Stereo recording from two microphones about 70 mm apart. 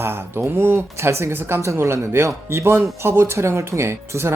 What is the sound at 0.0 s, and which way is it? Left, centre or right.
Speech, right.